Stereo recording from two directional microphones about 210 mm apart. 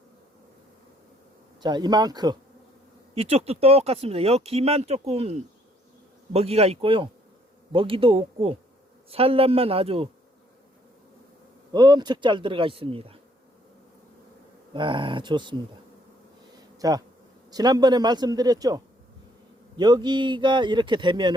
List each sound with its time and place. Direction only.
1.6 s speech: 20° right (ahead or behind)
11.7 s speech: 20° right (ahead or behind)
14.7 s speech: 20° right (ahead or behind)
16.7 s bee: 15° right (ahead or behind)
17.5 s speech: 20° right (ahead or behind)